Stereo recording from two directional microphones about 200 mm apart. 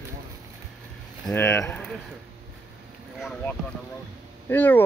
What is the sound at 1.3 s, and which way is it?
Speech, 15° left (ahead or behind).